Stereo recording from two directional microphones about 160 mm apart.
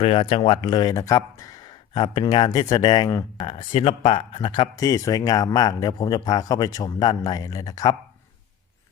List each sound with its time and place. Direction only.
0.0 s speech: 35° left (ahead or behind)
3.4 s speech: 35° left (ahead or behind)